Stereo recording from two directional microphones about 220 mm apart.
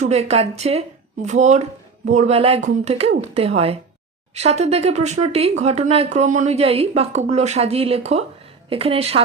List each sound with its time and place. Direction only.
0.0 s speech: 30° right (ahead or behind)